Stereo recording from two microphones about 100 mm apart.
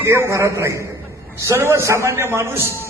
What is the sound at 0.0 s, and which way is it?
A man's voice, 25° right (ahead or behind).